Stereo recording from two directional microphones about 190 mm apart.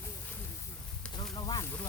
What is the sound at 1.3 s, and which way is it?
Snake, 20° left (ahead or behind).